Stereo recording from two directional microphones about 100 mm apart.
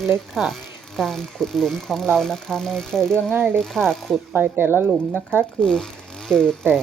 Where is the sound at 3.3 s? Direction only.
20° right (ahead or behind).